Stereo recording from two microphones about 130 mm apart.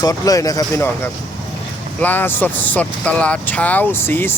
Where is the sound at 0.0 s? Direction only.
25° left (ahead or behind).